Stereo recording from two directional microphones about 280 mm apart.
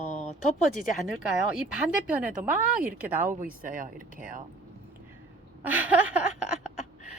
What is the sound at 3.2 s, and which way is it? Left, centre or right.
Speech, right.